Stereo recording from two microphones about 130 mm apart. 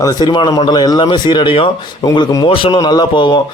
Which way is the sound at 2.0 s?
30° left (ahead or behind).